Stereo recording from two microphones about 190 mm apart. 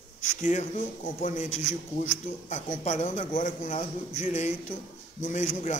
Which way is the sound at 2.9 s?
35° left (ahead or behind).